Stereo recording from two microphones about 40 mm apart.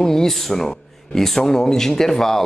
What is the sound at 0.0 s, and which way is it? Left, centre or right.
Speech, centre.